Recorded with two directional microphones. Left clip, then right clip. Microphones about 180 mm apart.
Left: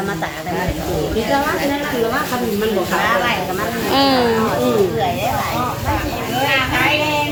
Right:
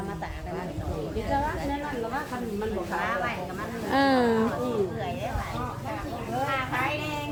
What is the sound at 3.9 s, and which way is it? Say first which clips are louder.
Speech: left 7 dB; 50° right (ahead or behind).